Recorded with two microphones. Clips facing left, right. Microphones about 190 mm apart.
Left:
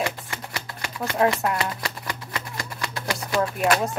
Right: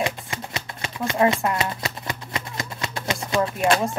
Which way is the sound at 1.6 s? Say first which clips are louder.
Right 1 dB; 25° right (ahead or behind).